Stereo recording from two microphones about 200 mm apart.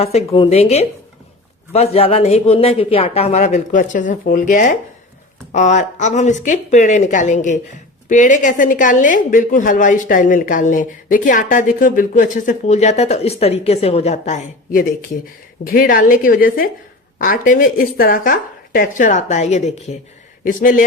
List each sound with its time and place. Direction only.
0.0 s speech: 30° left (ahead or behind)